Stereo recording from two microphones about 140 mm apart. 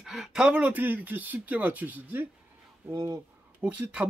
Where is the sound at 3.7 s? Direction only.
10° right (ahead or behind).